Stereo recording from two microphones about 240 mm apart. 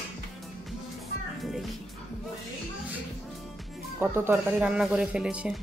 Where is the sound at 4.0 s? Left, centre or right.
Centre.